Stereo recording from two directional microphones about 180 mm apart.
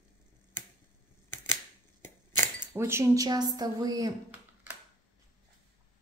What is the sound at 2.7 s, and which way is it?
Speech, 15° right (ahead or behind).